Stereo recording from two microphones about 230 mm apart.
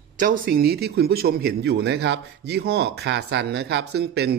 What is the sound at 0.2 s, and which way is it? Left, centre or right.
Speech, right.